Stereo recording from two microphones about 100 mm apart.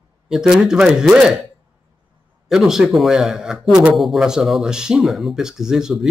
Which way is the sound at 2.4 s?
5° right (ahead or behind).